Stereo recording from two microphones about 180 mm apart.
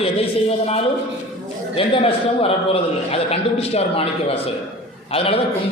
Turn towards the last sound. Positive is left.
turn(degrees=30)  # may be behind; listen again after turning